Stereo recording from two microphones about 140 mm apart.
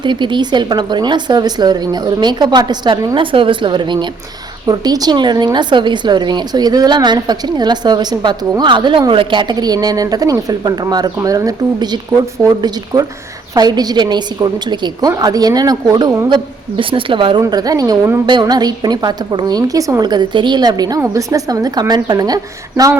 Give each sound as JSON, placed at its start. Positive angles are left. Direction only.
{"t": 0.0, "sound": "a woman's voice", "side_deg": -35}